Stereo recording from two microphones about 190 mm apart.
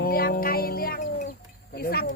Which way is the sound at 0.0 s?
50° left (ahead or behind).